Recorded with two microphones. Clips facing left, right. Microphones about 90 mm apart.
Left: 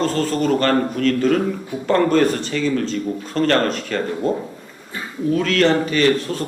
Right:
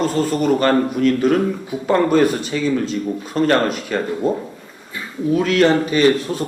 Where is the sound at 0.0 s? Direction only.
10° right (ahead or behind).